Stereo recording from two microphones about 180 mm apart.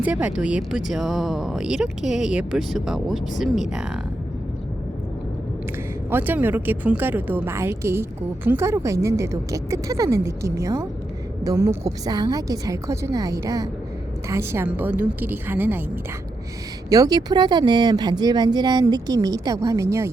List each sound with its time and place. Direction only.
0.0 s a woman's voice: 5° right (ahead or behind)
6.1 s a woman's voice: 10° right (ahead or behind)
16.9 s speech: 20° right (ahead or behind)